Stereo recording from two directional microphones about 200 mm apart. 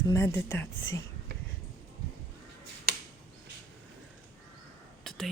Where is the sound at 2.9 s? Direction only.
50° right (ahead or behind).